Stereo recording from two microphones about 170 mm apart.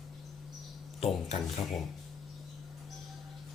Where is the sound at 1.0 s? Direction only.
35° left (ahead or behind).